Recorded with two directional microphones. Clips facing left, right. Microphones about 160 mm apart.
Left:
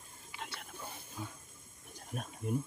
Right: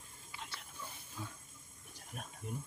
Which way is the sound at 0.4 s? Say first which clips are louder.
Left 4 dB; 60° left (ahead or behind).